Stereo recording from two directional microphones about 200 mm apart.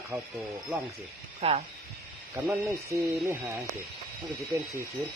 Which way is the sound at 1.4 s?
30° right (ahead or behind).